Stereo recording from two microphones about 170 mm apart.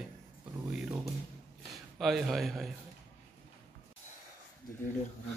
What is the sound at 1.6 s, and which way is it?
Speech, centre (ahead or behind).